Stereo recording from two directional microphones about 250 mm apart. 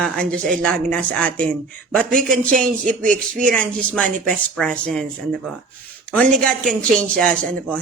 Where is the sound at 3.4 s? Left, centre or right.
Centre.